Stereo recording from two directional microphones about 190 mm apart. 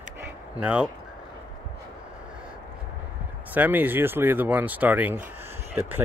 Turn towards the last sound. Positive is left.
turn(degrees=-10)  # may be behind; listen again after turning